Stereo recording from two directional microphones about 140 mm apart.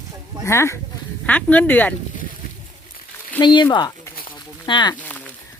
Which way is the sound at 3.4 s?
30° left (ahead or behind).